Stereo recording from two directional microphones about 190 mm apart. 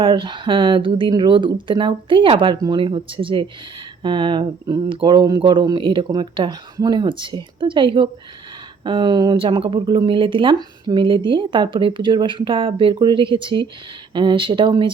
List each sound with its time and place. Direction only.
0.0 s speech: 25° right (ahead or behind)